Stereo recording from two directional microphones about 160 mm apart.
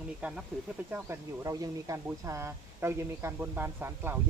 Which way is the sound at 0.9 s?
15° right (ahead or behind).